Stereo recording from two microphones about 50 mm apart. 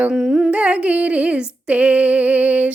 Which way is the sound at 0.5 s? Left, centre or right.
Right.